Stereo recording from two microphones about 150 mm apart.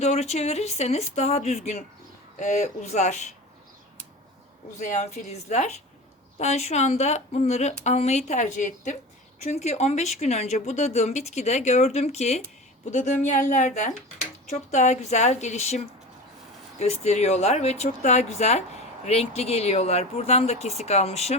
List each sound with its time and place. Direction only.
0.0 s speech: 45° left (ahead or behind)
4.8 s speech: 55° left (ahead or behind)